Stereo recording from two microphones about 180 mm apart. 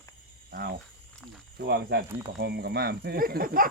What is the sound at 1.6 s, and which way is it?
Speech, 65° right (ahead or behind).